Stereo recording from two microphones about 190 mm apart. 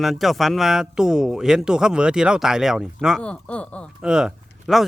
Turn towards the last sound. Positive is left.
turn(degrees=-5)  # may be behind; listen again after turning